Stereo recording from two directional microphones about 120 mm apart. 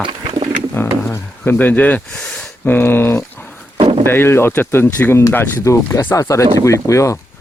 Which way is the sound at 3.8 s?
50° right (ahead or behind).